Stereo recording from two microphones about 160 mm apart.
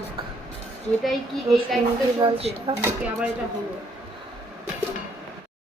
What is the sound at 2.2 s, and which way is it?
Speech, 35° right (ahead or behind).